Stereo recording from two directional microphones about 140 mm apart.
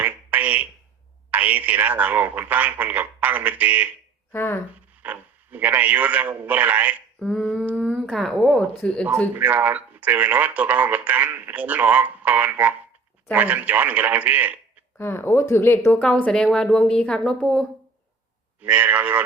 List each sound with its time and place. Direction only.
0.0 s a sound: 10° right (ahead or behind)
1.3 s speech: 10° right (ahead or behind)
4.3 s a woman's voice: 15° left (ahead or behind)
5.0 s speech: 10° right (ahead or behind)
7.2 s a sound: 5° left (ahead or behind)
7.6 s speech: 10° right (ahead or behind); by 9.0 s 5° left (ahead or behind)
9.3 s speech: 10° right (ahead or behind)
14.9 s a woman's voice: 15° left (ahead or behind)
18.6 s speech: 10° right (ahead or behind)